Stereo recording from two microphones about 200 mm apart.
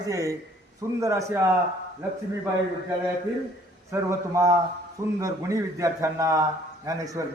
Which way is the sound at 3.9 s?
15° right (ahead or behind).